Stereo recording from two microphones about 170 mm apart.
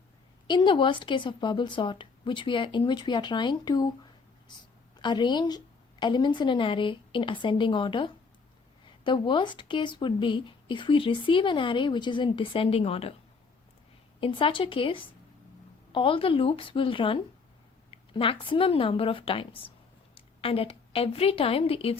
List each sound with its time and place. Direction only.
0.4 s speech: 25° left (ahead or behind)
14.2 s a woman's voice: 30° left (ahead or behind)